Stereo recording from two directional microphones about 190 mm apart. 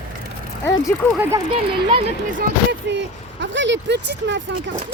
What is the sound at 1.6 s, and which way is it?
Speech, 25° right (ahead or behind).